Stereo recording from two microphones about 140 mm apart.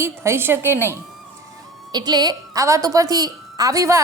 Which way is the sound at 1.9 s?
30° right (ahead or behind).